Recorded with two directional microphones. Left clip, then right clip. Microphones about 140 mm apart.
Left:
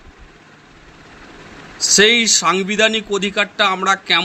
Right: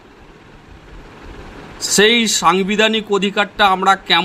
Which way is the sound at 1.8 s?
25° right (ahead or behind).